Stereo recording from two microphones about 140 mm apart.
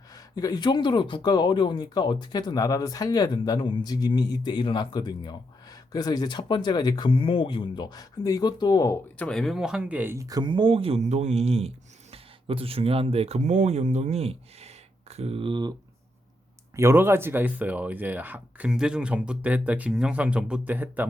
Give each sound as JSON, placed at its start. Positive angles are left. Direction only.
{"t": 0.1, "sound": "speech", "side_deg": 25}
{"t": 9.1, "sound": "speech", "side_deg": 5}
{"t": 16.7, "sound": "speech", "side_deg": -20}